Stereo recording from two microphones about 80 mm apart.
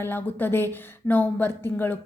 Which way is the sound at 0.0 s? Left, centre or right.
Left.